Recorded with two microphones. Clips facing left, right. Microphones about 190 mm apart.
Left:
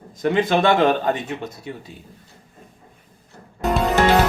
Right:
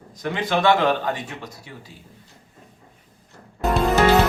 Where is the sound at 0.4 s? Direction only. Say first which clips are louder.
Even; 50° left (ahead or behind).